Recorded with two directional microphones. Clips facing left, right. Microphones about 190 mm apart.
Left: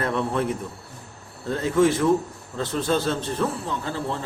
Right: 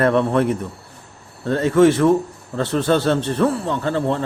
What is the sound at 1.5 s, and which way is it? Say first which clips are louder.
A man's voice: right 6 dB; 70° right (ahead or behind).